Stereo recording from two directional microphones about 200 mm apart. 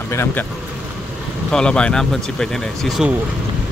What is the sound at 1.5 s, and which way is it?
Speech, 5° left (ahead or behind).